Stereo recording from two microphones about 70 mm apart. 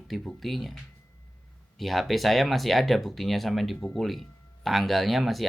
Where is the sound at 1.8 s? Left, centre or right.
Centre.